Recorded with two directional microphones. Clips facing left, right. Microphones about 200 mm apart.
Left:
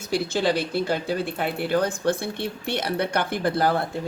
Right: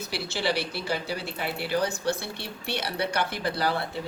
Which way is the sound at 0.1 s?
50° left (ahead or behind).